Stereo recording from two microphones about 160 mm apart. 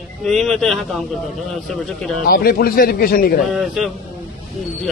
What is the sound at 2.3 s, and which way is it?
Speech, 70° left (ahead or behind).